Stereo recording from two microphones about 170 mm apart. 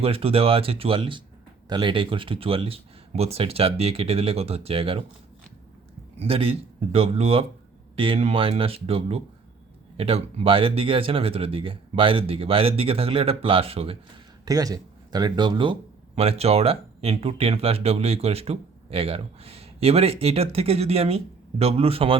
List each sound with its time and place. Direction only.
0.0 s speech: 35° right (ahead or behind)
6.1 s speech: 35° right (ahead or behind)
14.4 s speech: 20° right (ahead or behind)